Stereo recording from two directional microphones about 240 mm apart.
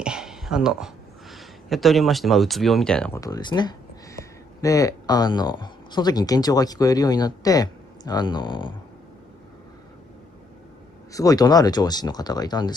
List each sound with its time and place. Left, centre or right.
0.0 s speech: centre
11.1 s speech: centre